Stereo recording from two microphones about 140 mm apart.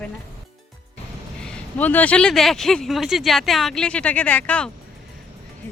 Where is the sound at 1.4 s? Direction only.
10° left (ahead or behind).